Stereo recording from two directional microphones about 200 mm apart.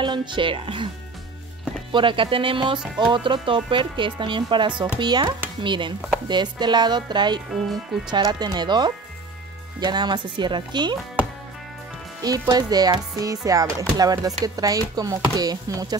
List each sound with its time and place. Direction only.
0.0 s speech: 25° right (ahead or behind)
1.9 s speech: 25° right (ahead or behind)
12.2 s speech: 20° right (ahead or behind)